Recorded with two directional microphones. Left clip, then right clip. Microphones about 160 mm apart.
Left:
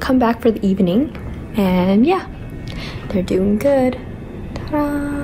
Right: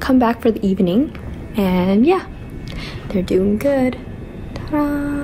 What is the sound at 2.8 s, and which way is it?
A woman's voice, 20° left (ahead or behind).